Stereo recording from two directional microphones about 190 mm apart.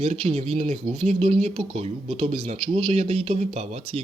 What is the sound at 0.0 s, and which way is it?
Speech, 35° right (ahead or behind).